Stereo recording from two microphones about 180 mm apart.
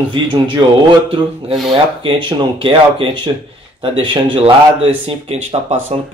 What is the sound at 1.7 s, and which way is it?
Speech, 30° right (ahead or behind).